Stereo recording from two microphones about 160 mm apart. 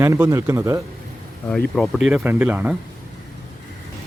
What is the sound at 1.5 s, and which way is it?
Speech, 5° left (ahead or behind).